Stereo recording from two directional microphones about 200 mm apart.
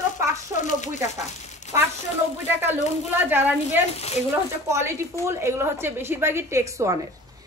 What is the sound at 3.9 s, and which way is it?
Speech, 30° left (ahead or behind).